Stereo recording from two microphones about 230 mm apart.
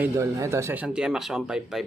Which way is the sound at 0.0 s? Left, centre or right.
Centre.